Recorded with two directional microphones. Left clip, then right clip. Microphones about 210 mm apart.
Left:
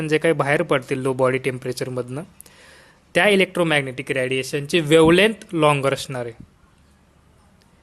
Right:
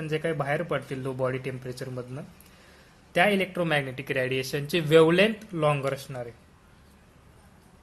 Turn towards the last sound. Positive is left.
turn(degrees=40)  # may be behind; listen again after turning